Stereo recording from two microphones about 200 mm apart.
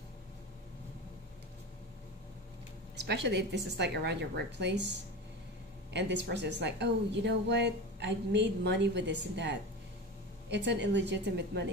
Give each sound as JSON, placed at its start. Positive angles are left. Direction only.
{"t": 3.0, "sound": "speech", "side_deg": -60}
{"t": 5.9, "sound": "speech", "side_deg": -60}